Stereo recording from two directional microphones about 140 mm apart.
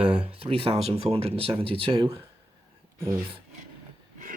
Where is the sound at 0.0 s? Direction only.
40° right (ahead or behind).